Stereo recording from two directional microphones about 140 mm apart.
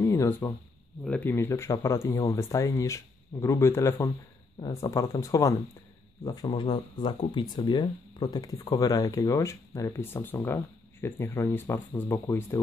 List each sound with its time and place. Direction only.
0.0 s a sound: 15° left (ahead or behind)
1.0 s speech: 5° left (ahead or behind)
1.3 s speech: 20° left (ahead or behind)
6.5 s speech: 35° left (ahead or behind); by 12.5 s 15° left (ahead or behind)